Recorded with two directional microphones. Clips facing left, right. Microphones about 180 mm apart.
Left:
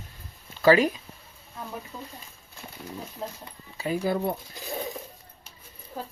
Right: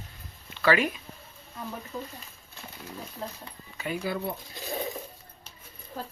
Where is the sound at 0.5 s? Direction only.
35° left (ahead or behind).